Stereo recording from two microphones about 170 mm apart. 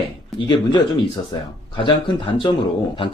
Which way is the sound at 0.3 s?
25° left (ahead or behind).